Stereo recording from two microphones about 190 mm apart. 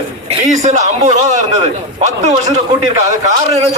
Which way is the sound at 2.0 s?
35° right (ahead or behind).